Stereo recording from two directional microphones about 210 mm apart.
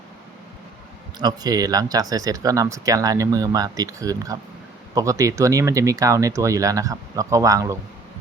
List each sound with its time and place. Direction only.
1.2 s speech: 20° right (ahead or behind)